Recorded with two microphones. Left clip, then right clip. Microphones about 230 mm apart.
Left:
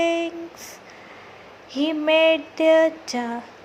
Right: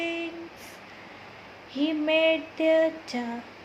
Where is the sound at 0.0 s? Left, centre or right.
Left.